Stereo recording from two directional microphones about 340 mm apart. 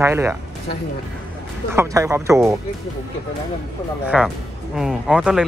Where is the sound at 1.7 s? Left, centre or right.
Centre.